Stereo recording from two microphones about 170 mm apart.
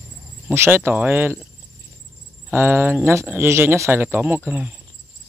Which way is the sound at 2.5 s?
15° right (ahead or behind).